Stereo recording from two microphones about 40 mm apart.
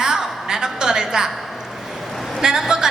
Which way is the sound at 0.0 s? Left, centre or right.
Centre.